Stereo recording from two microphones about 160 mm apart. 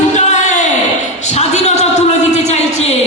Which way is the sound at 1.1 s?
45° left (ahead or behind).